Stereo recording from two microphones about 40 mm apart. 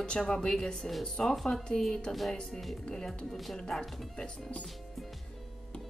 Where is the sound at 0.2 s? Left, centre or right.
Centre.